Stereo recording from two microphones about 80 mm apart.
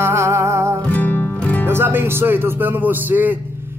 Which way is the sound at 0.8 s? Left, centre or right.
Left.